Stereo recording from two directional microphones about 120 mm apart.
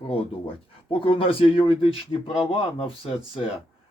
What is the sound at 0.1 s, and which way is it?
Speech, 50° left (ahead or behind).